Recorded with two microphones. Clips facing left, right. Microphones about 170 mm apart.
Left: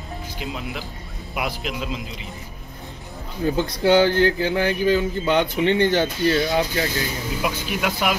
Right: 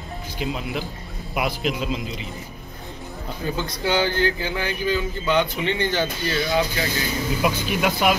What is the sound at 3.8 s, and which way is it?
Speech, 55° left (ahead or behind).